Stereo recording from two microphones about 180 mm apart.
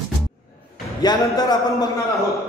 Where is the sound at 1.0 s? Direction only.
20° left (ahead or behind).